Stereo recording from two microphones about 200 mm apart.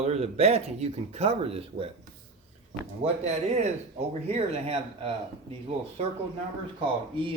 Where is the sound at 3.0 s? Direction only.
35° right (ahead or behind).